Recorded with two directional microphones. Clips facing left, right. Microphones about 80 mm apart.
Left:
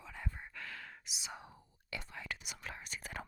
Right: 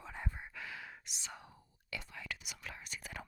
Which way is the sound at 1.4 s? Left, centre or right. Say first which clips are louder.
Left 2 dB; left.